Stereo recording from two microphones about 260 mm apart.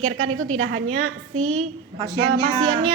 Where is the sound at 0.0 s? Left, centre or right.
Right.